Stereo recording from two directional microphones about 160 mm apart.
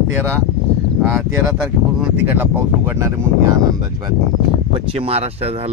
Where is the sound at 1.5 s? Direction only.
5° right (ahead or behind).